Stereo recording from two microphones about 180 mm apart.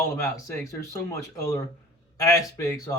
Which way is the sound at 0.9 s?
15° left (ahead or behind).